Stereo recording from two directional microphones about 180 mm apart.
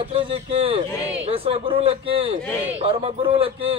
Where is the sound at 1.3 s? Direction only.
30° right (ahead or behind).